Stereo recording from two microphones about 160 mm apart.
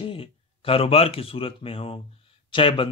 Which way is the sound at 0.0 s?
35° left (ahead or behind).